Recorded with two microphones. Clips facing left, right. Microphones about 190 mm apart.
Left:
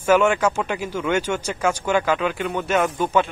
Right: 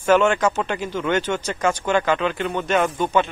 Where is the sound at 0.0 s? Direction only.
10° left (ahead or behind).